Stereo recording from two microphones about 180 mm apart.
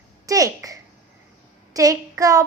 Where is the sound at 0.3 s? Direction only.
20° right (ahead or behind).